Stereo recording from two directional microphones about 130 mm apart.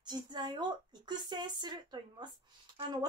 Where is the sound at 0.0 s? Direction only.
35° right (ahead or behind).